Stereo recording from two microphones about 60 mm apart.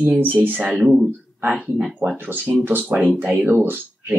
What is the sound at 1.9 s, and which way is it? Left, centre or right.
Speech, right.